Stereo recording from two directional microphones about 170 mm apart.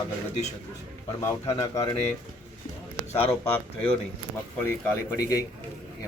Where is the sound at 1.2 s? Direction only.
15° left (ahead or behind).